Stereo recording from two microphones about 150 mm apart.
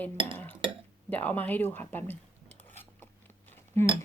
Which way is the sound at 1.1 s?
10° left (ahead or behind).